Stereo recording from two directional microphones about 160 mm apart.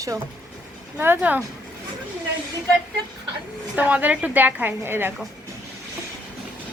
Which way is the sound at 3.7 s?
10° right (ahead or behind).